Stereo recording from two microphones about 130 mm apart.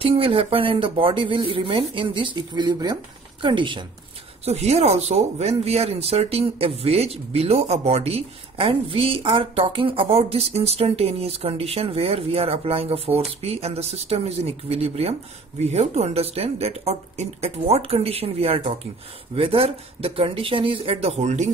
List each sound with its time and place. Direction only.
0.0 s a woman's voice: 45° right (ahead or behind)
4.5 s speech: 55° right (ahead or behind)